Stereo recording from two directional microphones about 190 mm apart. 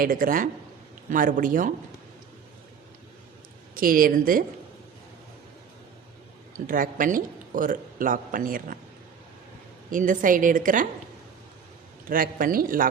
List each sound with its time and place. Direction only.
0.0 s a man's voice: 50° right (ahead or behind)
3.8 s a man's voice: 50° right (ahead or behind)
6.7 s a man's voice: 45° right (ahead or behind)
9.9 s a man's voice: 45° right (ahead or behind)
12.0 s a man's voice: 45° right (ahead or behind)